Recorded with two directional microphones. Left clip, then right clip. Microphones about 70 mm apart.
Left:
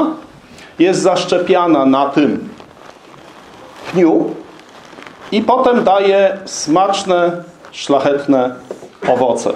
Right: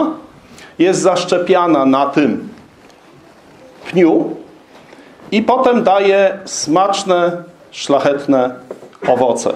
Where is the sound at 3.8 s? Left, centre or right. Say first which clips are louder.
Even; right.